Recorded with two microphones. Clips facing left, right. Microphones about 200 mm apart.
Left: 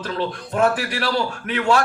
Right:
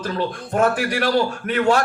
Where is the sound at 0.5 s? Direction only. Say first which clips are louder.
Right 1 dB; 45° right (ahead or behind).